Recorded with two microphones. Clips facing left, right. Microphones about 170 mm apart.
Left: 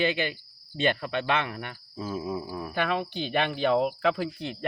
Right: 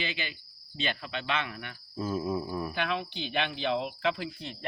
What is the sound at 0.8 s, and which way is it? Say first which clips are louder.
Speech: left 8 dB; 55° left (ahead or behind).